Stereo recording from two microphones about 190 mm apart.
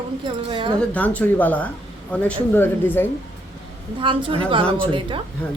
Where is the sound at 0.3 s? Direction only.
25° right (ahead or behind).